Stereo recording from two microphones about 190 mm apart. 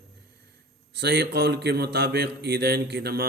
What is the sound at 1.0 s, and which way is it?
A man's voice, 60° right (ahead or behind).